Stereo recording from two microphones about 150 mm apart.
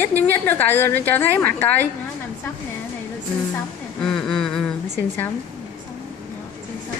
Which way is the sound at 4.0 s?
5° left (ahead or behind).